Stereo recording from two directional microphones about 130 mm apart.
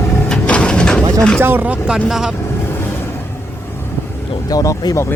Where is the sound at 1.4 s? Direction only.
15° right (ahead or behind).